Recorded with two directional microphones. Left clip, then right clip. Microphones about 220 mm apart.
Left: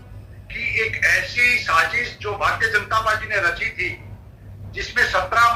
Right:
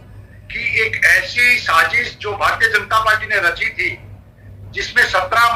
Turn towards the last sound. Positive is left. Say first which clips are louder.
# right 3 dB
turn(degrees=-15)  # may be behind; listen again after turning